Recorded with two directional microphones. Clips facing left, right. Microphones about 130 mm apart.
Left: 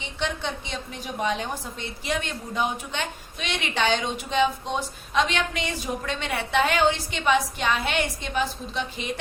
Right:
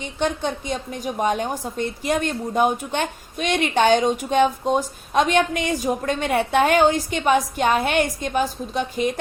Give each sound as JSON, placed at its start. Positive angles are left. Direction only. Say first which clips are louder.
{"t": 0.0, "sound": "a woman's voice", "louder": "right 6 dB", "side_deg": -45}